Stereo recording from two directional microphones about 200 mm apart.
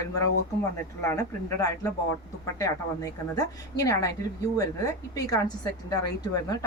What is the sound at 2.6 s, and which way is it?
Speech, 15° left (ahead or behind).